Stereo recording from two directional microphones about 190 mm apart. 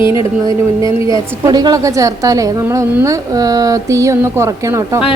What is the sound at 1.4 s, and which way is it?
A woman's voice, 20° right (ahead or behind).